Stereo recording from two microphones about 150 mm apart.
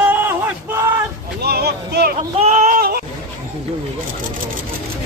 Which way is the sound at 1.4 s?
90° right.